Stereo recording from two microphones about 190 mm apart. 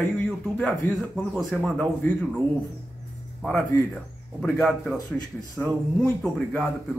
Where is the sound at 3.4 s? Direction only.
Centre (ahead or behind).